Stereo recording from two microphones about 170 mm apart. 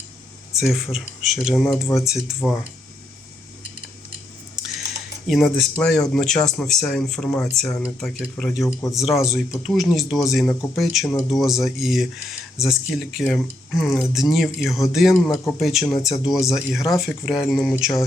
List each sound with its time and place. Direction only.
0.5 s speech: centre (ahead or behind)
5.3 s speech: centre (ahead or behind)